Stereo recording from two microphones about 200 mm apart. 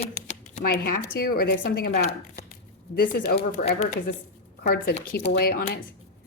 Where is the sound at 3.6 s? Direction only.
35° left (ahead or behind).